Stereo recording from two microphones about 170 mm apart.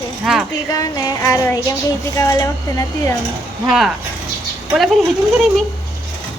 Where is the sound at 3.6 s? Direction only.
Centre (ahead or behind).